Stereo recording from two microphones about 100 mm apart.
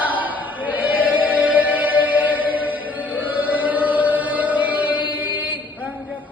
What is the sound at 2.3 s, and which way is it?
Chant, 15° right (ahead or behind).